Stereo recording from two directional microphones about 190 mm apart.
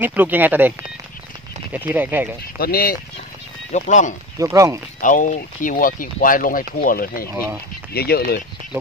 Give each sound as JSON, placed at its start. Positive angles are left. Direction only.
{"t": 0.0, "sound": "speech", "side_deg": -10}
{"t": 2.6, "sound": "speech", "side_deg": 50}
{"t": 3.7, "sound": "speech", "side_deg": 40}
{"t": 4.4, "sound": "speech", "side_deg": -15}
{"t": 5.0, "sound": "speech", "side_deg": 40}